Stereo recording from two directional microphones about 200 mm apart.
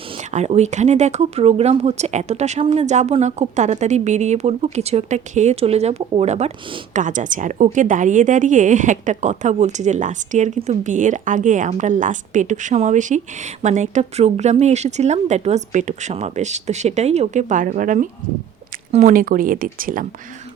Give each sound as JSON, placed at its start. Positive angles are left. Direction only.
{"t": 0.3, "sound": "a woman's voice", "side_deg": -35}